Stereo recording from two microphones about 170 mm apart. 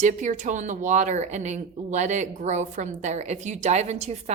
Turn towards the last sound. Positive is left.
turn(degrees=-40)  # may be behind; listen again after turning